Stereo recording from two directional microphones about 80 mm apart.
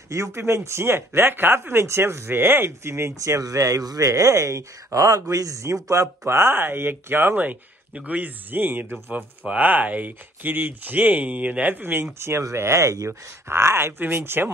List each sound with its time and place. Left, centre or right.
0.1 s speech: right